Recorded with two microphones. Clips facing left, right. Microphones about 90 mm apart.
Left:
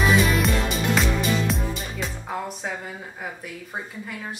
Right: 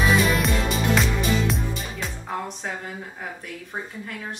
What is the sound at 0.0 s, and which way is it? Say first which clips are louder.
Music: even; centre (ahead or behind).